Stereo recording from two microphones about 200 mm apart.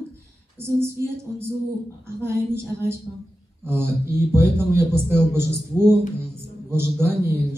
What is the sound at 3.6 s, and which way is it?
A man's voice, 10° right (ahead or behind).